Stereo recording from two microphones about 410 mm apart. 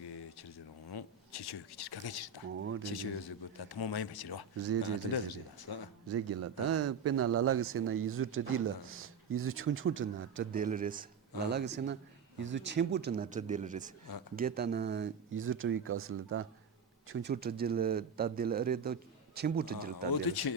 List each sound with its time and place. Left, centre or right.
0.9 s speech: left
2.5 s a man's voice: right
2.8 s speech: left
6.1 s a man's voice: right
20.2 s speech: left